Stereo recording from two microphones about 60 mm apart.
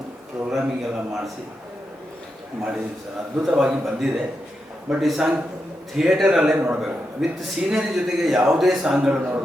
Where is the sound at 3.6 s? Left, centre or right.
Centre.